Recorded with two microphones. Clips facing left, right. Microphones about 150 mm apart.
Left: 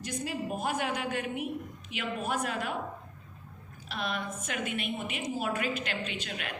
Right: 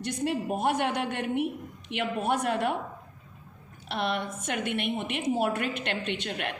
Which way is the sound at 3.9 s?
70° right (ahead or behind).